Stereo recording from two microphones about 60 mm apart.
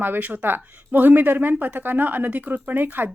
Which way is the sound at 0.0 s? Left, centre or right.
Right.